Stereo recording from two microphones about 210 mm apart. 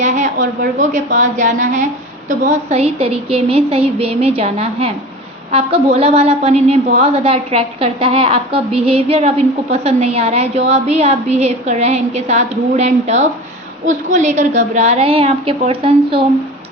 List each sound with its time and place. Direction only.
0.0 s a woman's voice: 35° right (ahead or behind)